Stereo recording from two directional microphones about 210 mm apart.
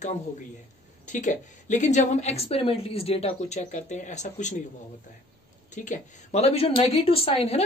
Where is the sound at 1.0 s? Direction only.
35° left (ahead or behind).